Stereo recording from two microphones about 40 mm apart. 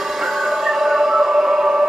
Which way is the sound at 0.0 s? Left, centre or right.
Centre.